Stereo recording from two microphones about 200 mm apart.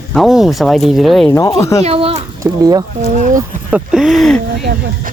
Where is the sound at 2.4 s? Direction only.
20° right (ahead or behind).